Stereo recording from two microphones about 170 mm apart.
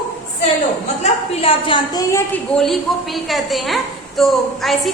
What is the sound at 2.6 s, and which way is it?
A woman's voice, centre (ahead or behind).